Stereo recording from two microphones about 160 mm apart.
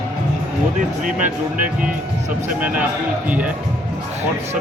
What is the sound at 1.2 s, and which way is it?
Music, 10° right (ahead or behind).